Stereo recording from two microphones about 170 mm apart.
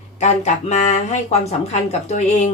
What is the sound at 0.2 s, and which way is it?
Speech, 45° left (ahead or behind).